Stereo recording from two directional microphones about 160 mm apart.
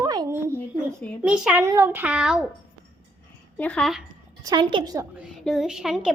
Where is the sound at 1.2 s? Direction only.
5° right (ahead or behind).